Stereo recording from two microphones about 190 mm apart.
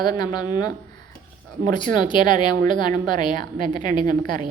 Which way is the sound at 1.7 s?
25° left (ahead or behind).